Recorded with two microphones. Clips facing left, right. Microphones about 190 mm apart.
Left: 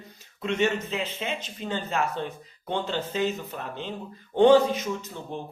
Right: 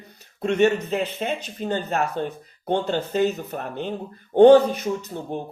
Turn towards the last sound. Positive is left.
turn(degrees=-50)  # may be behind; listen again after turning